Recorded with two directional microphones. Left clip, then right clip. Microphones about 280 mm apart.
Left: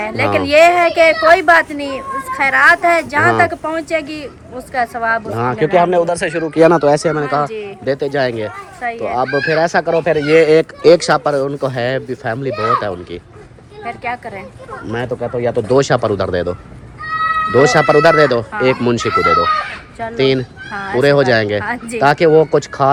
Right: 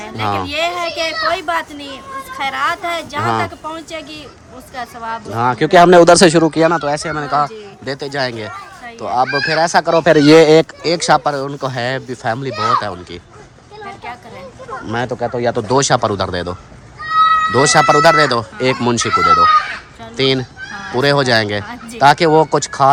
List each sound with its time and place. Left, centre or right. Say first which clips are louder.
0.0 s speech: left 4 dB; centre
5.5 s speech: right 5 dB; right
6.6 s speech: left 4 dB; centre
10.0 s speech: right 4 dB; right
10.2 s speech: right 1 dB; centre
14.8 s speech: right 1 dB; centre